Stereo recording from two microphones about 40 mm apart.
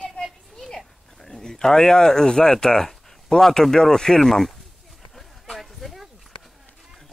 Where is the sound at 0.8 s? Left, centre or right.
Centre.